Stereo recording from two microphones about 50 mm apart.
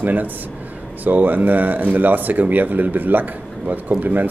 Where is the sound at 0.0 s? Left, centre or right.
Right.